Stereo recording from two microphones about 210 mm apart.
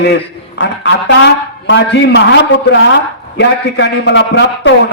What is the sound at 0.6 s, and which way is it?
A man's voice, 65° left (ahead or behind).